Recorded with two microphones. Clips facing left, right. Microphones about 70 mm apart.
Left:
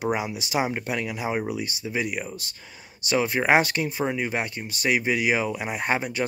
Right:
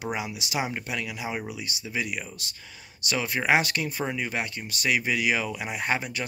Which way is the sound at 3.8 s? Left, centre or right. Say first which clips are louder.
Left 4 dB; centre.